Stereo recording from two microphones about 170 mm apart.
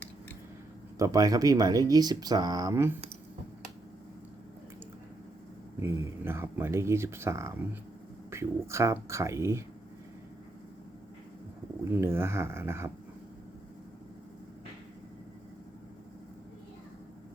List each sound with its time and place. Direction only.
0.9 s speech: 20° right (ahead or behind)
5.8 s speech: 15° right (ahead or behind)
11.9 s speech: 15° right (ahead or behind)